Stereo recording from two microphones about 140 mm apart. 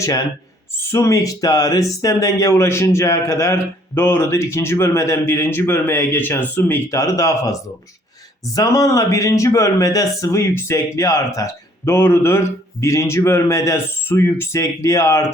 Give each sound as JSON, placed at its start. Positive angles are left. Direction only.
{"t": 0.9, "sound": "speech", "side_deg": 20}
{"t": 8.5, "sound": "speech", "side_deg": 25}